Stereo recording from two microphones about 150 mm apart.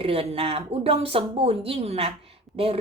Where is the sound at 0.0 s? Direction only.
40° right (ahead or behind).